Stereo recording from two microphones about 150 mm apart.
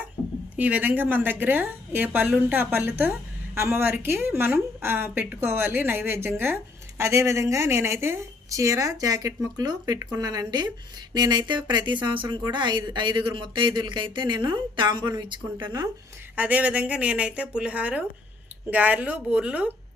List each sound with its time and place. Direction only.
0.5 s a woman's voice: 10° right (ahead or behind)
16.3 s a woman's voice: 10° right (ahead or behind)